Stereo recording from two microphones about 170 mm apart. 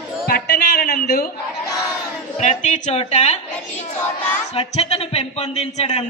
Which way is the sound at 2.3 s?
45° left (ahead or behind).